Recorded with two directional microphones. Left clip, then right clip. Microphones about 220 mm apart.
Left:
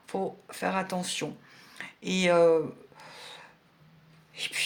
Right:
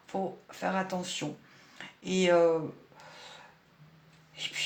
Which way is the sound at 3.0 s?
45° left (ahead or behind).